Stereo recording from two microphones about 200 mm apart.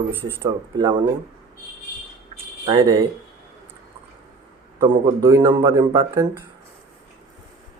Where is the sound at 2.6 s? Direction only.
25° right (ahead or behind).